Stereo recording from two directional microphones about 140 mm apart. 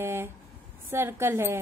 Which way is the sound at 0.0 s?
15° right (ahead or behind).